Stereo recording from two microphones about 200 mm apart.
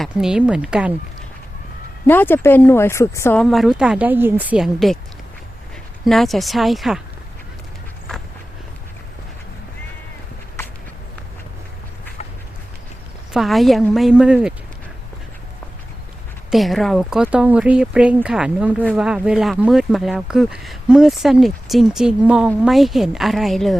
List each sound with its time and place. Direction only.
0.0 s speech: 5° right (ahead or behind)
2.0 s speech: 10° left (ahead or behind)
3.4 s speech: centre (ahead or behind)
6.1 s speech: centre (ahead or behind)
13.3 s speech: centre (ahead or behind)
16.5 s speech: centre (ahead or behind)